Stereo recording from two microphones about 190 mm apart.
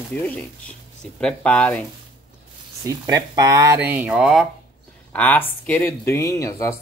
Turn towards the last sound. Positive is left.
turn(degrees=15)  # may be behind; listen again after turning